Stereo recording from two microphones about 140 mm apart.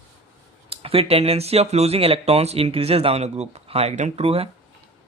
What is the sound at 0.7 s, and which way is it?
Speech, 45° right (ahead or behind).